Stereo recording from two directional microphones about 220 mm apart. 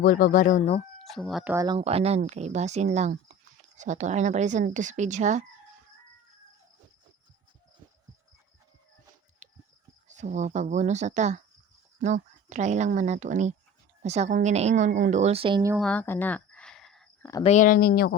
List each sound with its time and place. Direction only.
0.0 s speech: 40° left (ahead or behind)
0.9 s speech: centre (ahead or behind)
1.5 s speech: 20° right (ahead or behind)
9.4 s a sound: 30° right (ahead or behind)
10.1 s speech: 35° right (ahead or behind)
15.8 s a sound: 5° left (ahead or behind)
17.4 s speech: 35° left (ahead or behind)